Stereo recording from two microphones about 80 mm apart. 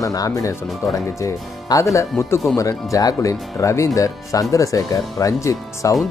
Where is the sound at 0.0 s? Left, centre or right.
Left.